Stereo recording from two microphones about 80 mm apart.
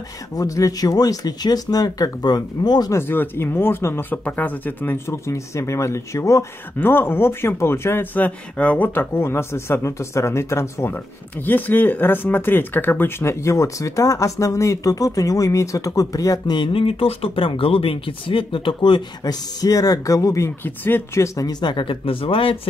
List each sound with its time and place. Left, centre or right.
0.4 s speech: left
2.9 s speech: left
6.8 s speech: left
16.4 s speech: left
17.4 s speech: left
19.6 s speech: left
20.6 s speech: left
21.4 s speech: left